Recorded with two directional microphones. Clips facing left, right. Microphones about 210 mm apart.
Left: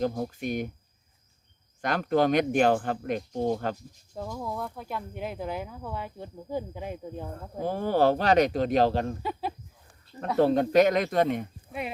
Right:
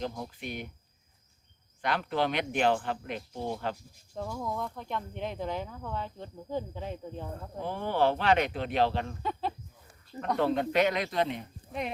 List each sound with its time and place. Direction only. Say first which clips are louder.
0.0 s speech: left 7 dB; 45° left (ahead or behind)
1.8 s speech: left 5 dB; 45° left (ahead or behind)
4.1 s speech: left 1 dB; 5° left (ahead or behind)
7.6 s speech: left 4 dB; 40° left (ahead or behind)
10.3 s speech: left 6 dB; 40° left (ahead or behind)